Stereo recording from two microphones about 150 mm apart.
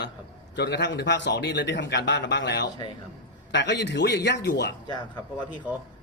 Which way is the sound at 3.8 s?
90° left.